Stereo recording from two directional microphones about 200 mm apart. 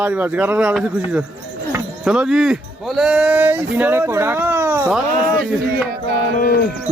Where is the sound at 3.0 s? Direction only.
5° right (ahead or behind).